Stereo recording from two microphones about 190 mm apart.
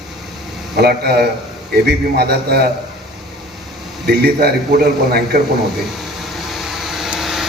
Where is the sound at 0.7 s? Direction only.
55° right (ahead or behind).